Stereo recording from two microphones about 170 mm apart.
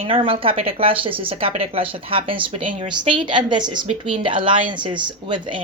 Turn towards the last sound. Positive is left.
turn(degrees=-30)  # may be behind; listen again after turning